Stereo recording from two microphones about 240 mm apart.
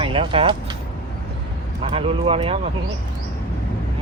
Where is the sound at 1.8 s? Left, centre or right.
Right.